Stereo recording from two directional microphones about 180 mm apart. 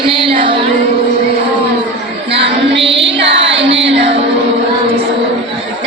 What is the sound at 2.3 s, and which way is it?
Female singing, 75° right (ahead or behind).